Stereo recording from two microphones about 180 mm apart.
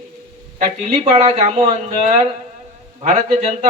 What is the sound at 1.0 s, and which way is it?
A man's voice, 35° right (ahead or behind).